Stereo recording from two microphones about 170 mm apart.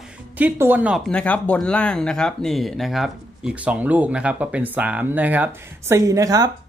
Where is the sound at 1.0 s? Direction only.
5° left (ahead or behind).